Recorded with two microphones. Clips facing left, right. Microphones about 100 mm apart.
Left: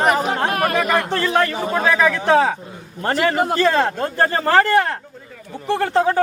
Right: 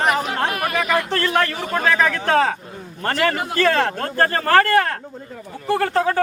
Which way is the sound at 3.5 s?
15° left (ahead or behind).